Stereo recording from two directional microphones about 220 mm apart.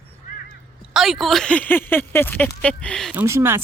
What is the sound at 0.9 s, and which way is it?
Speech, centre (ahead or behind).